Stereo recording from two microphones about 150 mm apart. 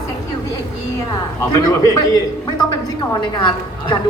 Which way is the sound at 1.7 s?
25° left (ahead or behind).